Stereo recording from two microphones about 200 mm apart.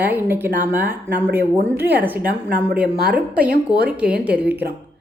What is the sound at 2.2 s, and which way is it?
Speech, 45° right (ahead or behind).